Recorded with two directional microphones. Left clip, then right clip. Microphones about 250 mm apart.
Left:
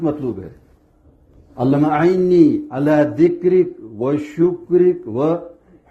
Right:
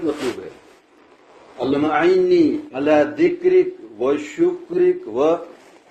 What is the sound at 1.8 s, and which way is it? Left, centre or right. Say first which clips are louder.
A man's voice: right 2 dB; left.